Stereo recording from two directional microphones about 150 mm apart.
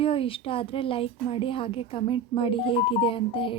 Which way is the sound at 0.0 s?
40° left (ahead or behind).